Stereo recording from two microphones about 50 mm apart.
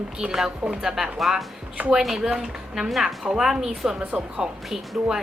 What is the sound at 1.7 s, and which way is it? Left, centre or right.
Speech, right.